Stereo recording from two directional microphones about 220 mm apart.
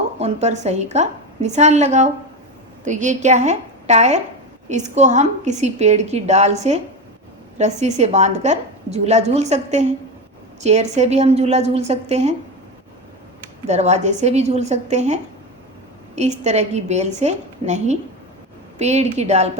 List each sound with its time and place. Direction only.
0.2 s a woman's voice: 30° right (ahead or behind)
13.7 s a woman's voice: 30° right (ahead or behind)